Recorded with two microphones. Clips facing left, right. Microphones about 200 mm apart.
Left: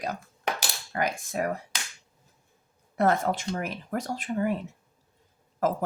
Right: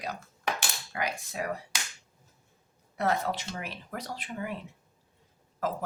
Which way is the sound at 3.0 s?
50° left (ahead or behind).